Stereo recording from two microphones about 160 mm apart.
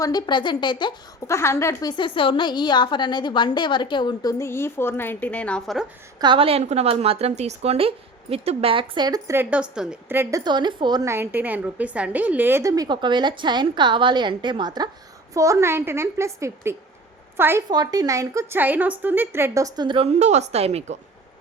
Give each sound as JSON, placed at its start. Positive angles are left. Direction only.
{"t": 0.0, "sound": "a woman's voice", "side_deg": 25}
{"t": 6.1, "sound": "a woman's voice", "side_deg": -30}
{"t": 10.4, "sound": "a woman's voice", "side_deg": -30}
{"t": 20.1, "sound": "a woman's voice", "side_deg": -45}